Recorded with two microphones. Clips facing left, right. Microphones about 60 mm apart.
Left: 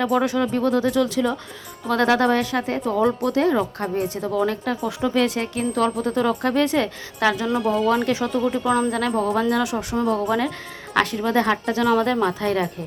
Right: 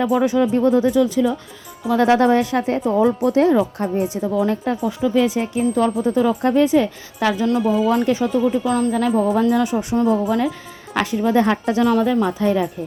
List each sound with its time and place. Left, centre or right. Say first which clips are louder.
0.0 s speech: right 3 dB; centre
0.5 s speech: right 4 dB; centre
2.3 s a woman's voice: right 4 dB; right
3.0 s speech: right 3 dB; centre
4.4 s a woman's voice: right 3 dB; centre
4.8 s speech: right 2 dB; centre